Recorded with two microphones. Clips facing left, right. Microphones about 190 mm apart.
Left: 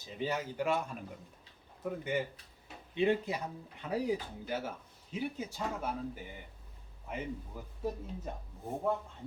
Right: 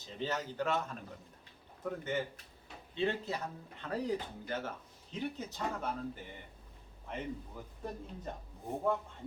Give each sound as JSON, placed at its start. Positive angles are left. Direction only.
{"t": 0.0, "sound": "speech", "side_deg": 10}